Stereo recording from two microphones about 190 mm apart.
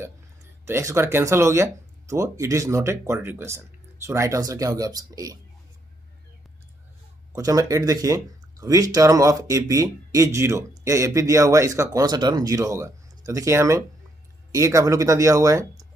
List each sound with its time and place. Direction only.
0.7 s speech: 15° right (ahead or behind)
7.3 s speech: 20° right (ahead or behind)